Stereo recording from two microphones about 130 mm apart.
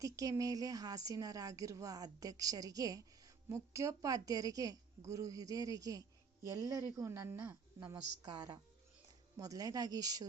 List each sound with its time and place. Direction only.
0.0 s a woman's voice: 25° right (ahead or behind)
8.2 s a woman's voice: 30° right (ahead or behind)